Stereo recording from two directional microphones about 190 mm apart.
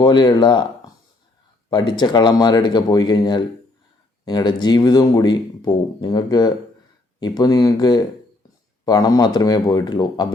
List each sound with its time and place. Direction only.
0.0 s speech: 20° left (ahead or behind)
1.7 s speech: 25° left (ahead or behind)